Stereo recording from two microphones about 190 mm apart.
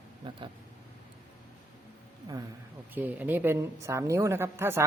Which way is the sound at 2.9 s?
10° right (ahead or behind).